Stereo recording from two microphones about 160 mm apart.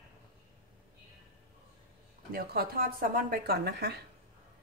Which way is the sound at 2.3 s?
70° right (ahead or behind).